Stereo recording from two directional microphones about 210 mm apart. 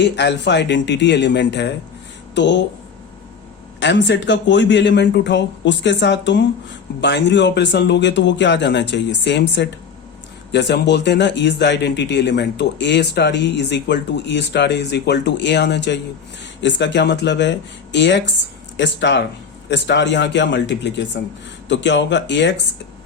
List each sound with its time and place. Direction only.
0.0 s speech: 55° left (ahead or behind)
3.8 s speech: 55° left (ahead or behind)